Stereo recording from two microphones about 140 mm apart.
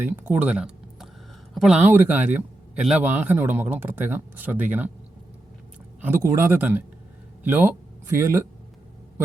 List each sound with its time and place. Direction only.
0.0 s a man's voice: 10° right (ahead or behind)
1.8 s a man's voice: 15° right (ahead or behind)
6.0 s a man's voice: 20° right (ahead or behind)